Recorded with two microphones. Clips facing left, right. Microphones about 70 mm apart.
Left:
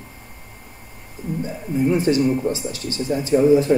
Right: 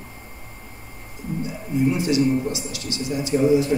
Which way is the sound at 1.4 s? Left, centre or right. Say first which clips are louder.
Even; left.